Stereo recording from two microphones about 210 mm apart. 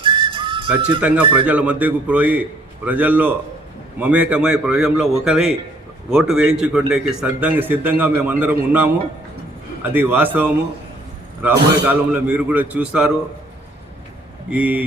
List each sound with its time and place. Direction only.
0.0 s whistle: 25° right (ahead or behind)
1.5 s a man's voice: 5° right (ahead or behind)
14.5 s speech: 10° right (ahead or behind)